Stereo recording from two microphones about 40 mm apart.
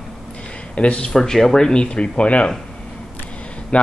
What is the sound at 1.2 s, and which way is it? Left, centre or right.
Speech, centre.